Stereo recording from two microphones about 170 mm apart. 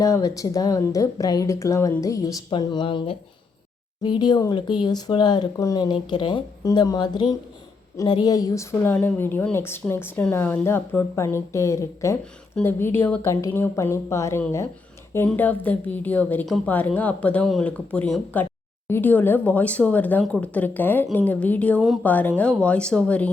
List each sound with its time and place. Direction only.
0.0 s speech: 20° left (ahead or behind)